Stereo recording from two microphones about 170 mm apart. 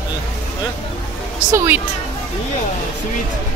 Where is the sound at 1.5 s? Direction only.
15° right (ahead or behind).